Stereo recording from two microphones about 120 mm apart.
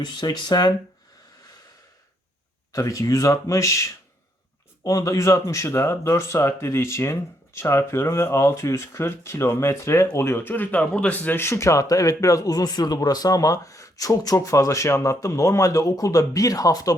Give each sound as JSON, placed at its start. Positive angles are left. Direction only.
{"t": 0.0, "sound": "speech", "side_deg": 35}
{"t": 2.7, "sound": "speech", "side_deg": 30}